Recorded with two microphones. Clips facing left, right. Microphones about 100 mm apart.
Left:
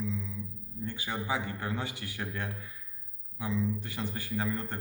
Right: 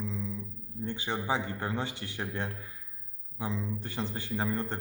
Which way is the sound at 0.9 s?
25° right (ahead or behind).